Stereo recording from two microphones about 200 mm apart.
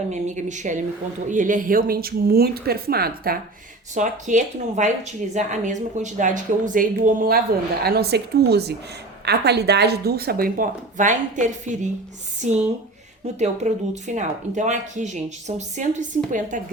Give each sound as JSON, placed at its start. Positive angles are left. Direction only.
{"t": 0.1, "sound": "speech", "side_deg": -35}
{"t": 3.9, "sound": "speech", "side_deg": -40}